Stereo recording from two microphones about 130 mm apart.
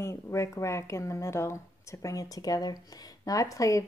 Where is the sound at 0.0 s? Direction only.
20° left (ahead or behind).